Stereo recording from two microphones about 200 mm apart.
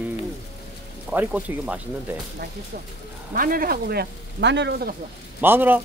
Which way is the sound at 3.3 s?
45° right (ahead or behind).